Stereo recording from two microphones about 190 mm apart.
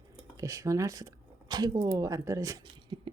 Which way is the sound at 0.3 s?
15° right (ahead or behind).